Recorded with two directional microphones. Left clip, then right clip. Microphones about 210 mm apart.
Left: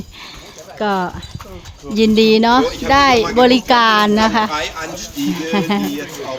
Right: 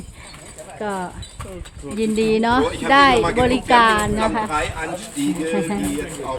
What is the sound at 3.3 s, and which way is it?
A woman's voice, 45° left (ahead or behind).